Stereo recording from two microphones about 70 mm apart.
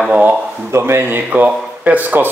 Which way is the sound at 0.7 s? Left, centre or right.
Right.